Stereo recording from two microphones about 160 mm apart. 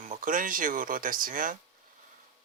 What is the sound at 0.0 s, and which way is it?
Speech, 55° right (ahead or behind).